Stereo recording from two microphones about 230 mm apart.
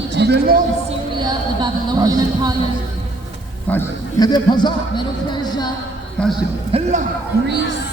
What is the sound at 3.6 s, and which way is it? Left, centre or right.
A man's voice, centre.